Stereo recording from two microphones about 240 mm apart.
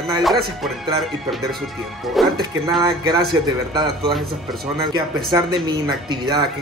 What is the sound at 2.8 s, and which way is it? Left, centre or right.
Speech, centre.